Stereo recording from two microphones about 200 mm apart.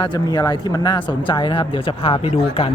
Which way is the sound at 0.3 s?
20° left (ahead or behind).